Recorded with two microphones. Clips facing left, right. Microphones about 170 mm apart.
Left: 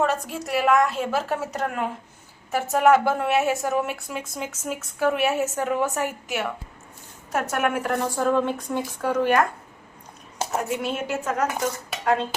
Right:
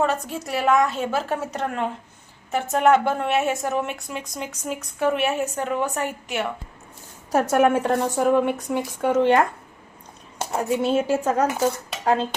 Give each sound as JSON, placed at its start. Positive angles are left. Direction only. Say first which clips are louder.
{"t": 0.0, "sound": "a woman's voice", "louder": "right 1 dB", "side_deg": 0}
{"t": 7.3, "sound": "a woman's voice", "louder": "right 6 dB", "side_deg": -30}
{"t": 10.6, "sound": "speech", "louder": "right 9 dB", "side_deg": -30}